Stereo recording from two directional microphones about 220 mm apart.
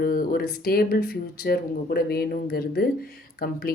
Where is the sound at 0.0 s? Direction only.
40° left (ahead or behind).